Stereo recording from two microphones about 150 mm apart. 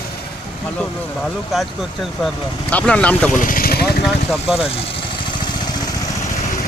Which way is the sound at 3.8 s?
Centre (ahead or behind).